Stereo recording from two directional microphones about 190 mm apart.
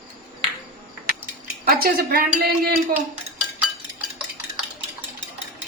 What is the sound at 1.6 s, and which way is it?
A woman's voice, 50° right (ahead or behind).